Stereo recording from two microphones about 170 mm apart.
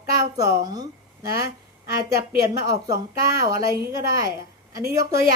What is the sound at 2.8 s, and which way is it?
Speech, 20° right (ahead or behind).